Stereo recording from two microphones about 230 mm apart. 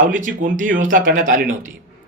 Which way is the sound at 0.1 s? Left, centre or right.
Right.